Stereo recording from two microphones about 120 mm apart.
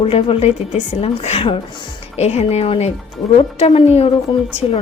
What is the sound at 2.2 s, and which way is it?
A woman's voice, 65° left (ahead or behind).